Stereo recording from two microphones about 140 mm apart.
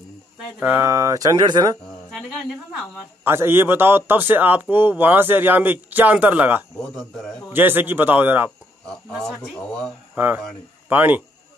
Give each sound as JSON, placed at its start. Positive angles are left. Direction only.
{"t": 0.6, "sound": "a man's voice", "side_deg": -15}
{"t": 0.8, "sound": "speech", "side_deg": -25}
{"t": 2.0, "sound": "a sound", "side_deg": 0}
{"t": 3.3, "sound": "a man's voice", "side_deg": -15}
{"t": 6.8, "sound": "a man's voice", "side_deg": 5}
{"t": 7.4, "sound": "a man's voice", "side_deg": -15}
{"t": 8.8, "sound": "speech", "side_deg": 5}
{"t": 10.1, "sound": "a man's voice", "side_deg": -10}